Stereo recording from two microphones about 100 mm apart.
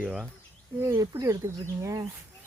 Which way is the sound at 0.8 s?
30° right (ahead or behind).